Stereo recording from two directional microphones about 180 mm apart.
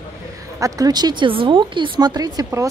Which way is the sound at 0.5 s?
20° right (ahead or behind).